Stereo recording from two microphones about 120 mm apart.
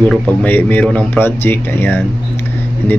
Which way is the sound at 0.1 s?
10° left (ahead or behind).